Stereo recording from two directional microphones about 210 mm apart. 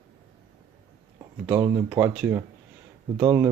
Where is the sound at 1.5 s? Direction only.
10° right (ahead or behind).